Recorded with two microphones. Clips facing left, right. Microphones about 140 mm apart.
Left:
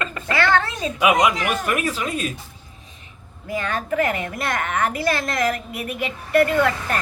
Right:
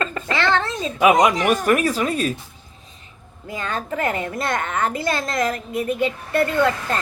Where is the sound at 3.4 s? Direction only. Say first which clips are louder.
Left 2 dB; 25° right (ahead or behind).